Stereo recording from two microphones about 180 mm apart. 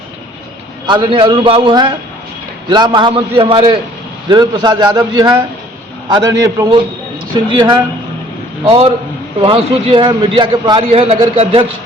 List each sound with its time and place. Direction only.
0.9 s a man's voice: 25° right (ahead or behind)